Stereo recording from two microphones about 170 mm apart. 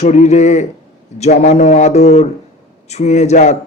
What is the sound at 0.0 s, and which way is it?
A man's voice, 40° left (ahead or behind).